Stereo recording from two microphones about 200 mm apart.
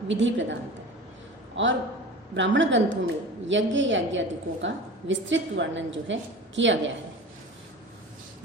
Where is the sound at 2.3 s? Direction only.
65° right (ahead or behind).